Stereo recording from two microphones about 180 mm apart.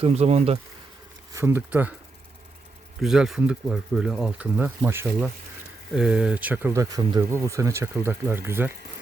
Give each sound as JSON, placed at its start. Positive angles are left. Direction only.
{"t": 0.0, "sound": "speech", "side_deg": -35}
{"t": 1.3, "sound": "speech", "side_deg": -15}
{"t": 3.0, "sound": "speech", "side_deg": 0}